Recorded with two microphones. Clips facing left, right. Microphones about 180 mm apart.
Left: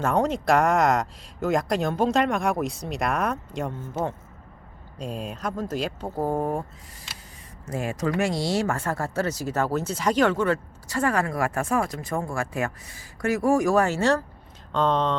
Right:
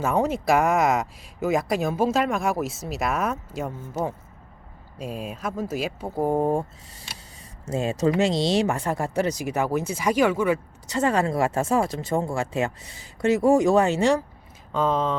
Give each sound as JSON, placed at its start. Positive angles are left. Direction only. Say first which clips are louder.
{"t": 0.0, "sound": "speech", "louder": "even", "side_deg": -5}
{"t": 7.7, "sound": "speech", "louder": "right 4 dB", "side_deg": -25}
{"t": 10.8, "sound": "speech", "louder": "right 2 dB", "side_deg": -20}